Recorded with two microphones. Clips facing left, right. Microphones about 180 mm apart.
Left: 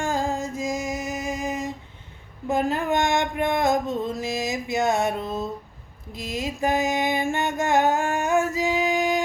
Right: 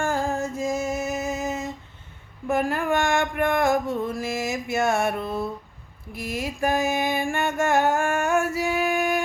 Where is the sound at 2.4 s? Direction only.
20° left (ahead or behind).